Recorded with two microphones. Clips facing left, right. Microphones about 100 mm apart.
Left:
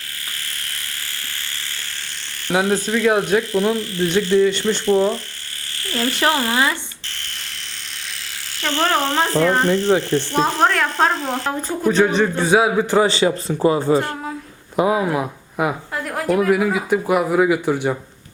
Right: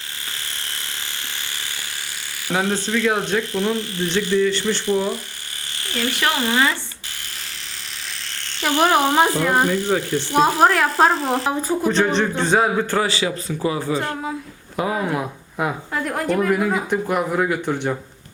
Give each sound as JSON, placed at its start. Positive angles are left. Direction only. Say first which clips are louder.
{"t": 2.5, "sound": "speech", "louder": "left 3 dB", "side_deg": 10}
{"t": 3.8, "sound": "speech", "louder": "left 3 dB", "side_deg": -20}
{"t": 4.4, "sound": "speech", "louder": "left 3 dB", "side_deg": 20}
{"t": 4.9, "sound": "speech", "louder": "left 5 dB", "side_deg": -15}
{"t": 6.1, "sound": "speech", "louder": "left 1 dB", "side_deg": 30}
{"t": 8.6, "sound": "speech", "louder": "right 2 dB", "side_deg": -15}
{"t": 13.1, "sound": "speech", "louder": "left 5 dB", "side_deg": 35}
{"t": 14.8, "sound": "speech", "louder": "left 4 dB", "side_deg": 10}